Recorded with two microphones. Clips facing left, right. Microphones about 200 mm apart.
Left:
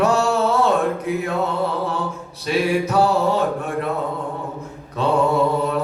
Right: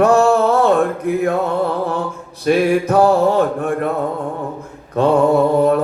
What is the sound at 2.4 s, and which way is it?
Speech, 50° right (ahead or behind).